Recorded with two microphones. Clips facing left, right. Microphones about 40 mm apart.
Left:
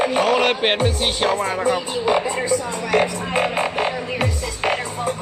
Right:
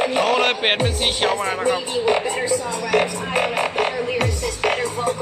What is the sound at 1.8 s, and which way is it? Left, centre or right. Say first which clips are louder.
Speech: even; right.